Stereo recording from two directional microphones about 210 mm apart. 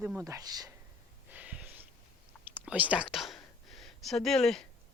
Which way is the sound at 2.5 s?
5° right (ahead or behind).